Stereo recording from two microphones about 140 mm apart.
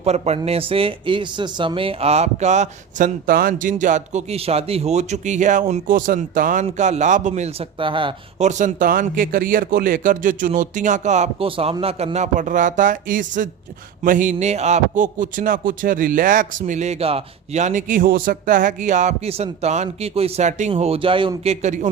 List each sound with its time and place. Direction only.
0.0 s speech: 50° right (ahead or behind)
3.2 s a man's voice: 85° right; by 5.8 s 60° right (ahead or behind)
5.9 s speech: 80° right
6.7 s a man's voice: 55° right (ahead or behind)
7.8 s speech: 35° right (ahead or behind)
8.4 s speech: 60° right (ahead or behind)
11.4 s a man's voice: 40° right (ahead or behind); by 21.8 s 55° right (ahead or behind)